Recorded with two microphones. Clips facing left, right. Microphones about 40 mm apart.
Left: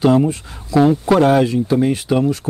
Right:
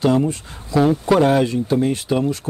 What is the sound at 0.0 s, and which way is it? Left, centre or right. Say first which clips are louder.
Speech: left 3 dB; centre.